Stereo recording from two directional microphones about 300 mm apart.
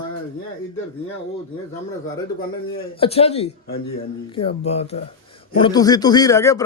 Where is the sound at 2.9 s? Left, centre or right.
Centre.